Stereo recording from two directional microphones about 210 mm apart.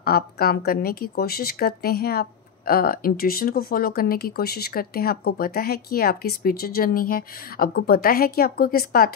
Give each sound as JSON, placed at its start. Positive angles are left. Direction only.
{"t": 0.0, "sound": "a woman's voice", "side_deg": 45}